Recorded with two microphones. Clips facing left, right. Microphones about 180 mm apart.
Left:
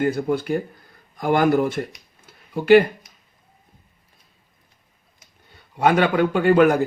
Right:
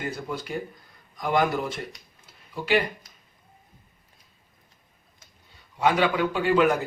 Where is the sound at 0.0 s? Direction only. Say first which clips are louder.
Left 11 dB; 55° left (ahead or behind).